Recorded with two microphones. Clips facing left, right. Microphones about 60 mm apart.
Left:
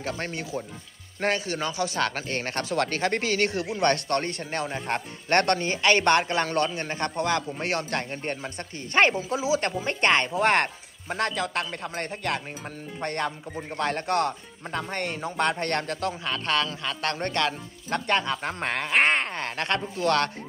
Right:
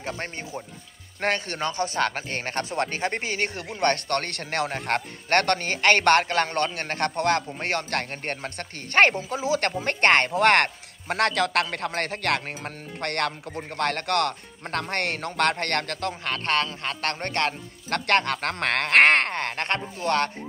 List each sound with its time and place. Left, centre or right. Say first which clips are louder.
0.0 s speech: left 1 dB; right
1.2 s speech: even; right
3.8 s speech: right 1 dB; right
4.6 s speech: right 2 dB; right
12.6 s speech: right 1 dB; right
13.7 s speech: right 1 dB; right
17.9 s speech: right 2 dB; right